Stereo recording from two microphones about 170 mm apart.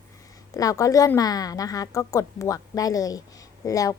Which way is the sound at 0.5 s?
20° left (ahead or behind).